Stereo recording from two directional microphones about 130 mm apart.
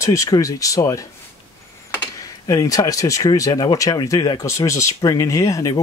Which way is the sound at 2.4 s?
25° left (ahead or behind).